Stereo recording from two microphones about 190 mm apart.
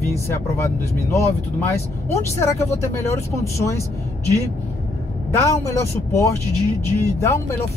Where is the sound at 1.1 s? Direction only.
15° left (ahead or behind).